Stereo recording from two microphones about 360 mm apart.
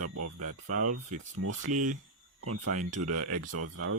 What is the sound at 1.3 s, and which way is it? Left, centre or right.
Speech, right.